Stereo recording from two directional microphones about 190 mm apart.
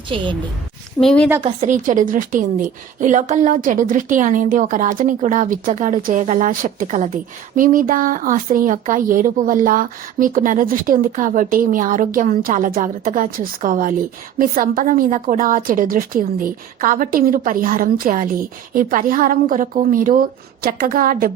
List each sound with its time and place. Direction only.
0.1 s a woman's voice: 30° right (ahead or behind)
1.0 s a woman's voice: 5° left (ahead or behind)
1.6 s a woman's voice: 45° right (ahead or behind)